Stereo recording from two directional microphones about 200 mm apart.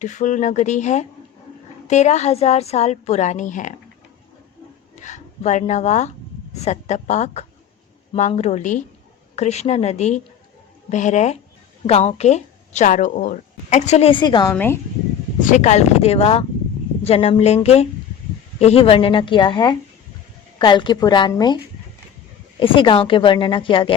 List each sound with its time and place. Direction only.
0.0 s speech: 40° left (ahead or behind)
4.9 s speech: 35° left (ahead or behind)
14.5 s speech: 10° left (ahead or behind)
15.4 s speech: 40° left (ahead or behind); by 21.6 s 20° left (ahead or behind)
22.6 s speech: 25° left (ahead or behind)